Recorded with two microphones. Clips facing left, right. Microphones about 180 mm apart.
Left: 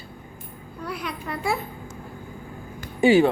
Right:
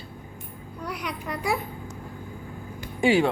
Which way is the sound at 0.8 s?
15° right (ahead or behind).